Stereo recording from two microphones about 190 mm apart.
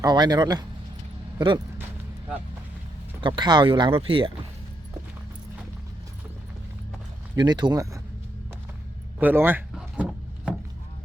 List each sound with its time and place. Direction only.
0.0 s speech: 20° right (ahead or behind)
3.2 s speech: 25° right (ahead or behind)
7.3 s speech: 20° right (ahead or behind)
9.1 s wood: 10° right (ahead or behind)